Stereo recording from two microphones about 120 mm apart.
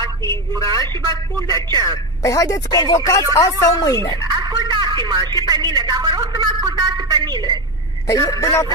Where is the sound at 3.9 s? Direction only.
35° right (ahead or behind).